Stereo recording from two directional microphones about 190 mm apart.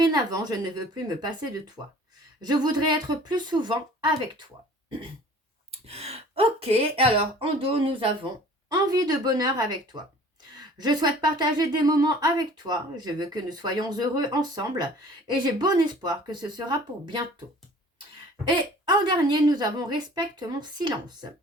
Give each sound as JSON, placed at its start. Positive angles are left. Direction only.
{"t": 0.0, "sound": "speech", "side_deg": -20}
{"t": 5.7, "sound": "speech", "side_deg": -35}
{"t": 18.4, "sound": "speech", "side_deg": -25}